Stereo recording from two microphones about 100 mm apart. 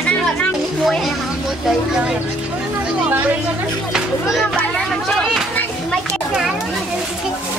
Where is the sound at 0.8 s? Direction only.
Centre (ahead or behind).